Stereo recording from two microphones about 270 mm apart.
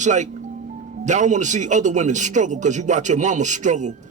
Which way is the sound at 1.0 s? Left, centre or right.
Right.